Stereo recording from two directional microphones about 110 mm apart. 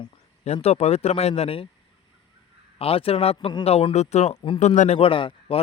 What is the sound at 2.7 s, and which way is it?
A man's voice, 60° left (ahead or behind).